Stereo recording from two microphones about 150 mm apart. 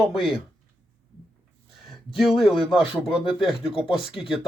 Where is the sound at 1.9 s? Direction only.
Centre (ahead or behind).